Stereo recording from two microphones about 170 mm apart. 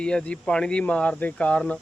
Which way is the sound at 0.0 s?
5° left (ahead or behind).